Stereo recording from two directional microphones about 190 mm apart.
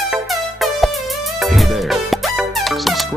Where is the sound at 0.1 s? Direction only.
Centre (ahead or behind).